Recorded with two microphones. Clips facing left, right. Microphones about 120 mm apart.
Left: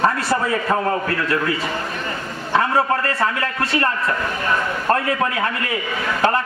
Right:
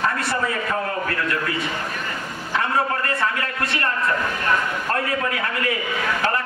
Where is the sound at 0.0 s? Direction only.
35° left (ahead or behind).